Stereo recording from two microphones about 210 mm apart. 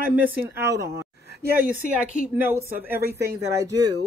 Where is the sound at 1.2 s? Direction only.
50° right (ahead or behind).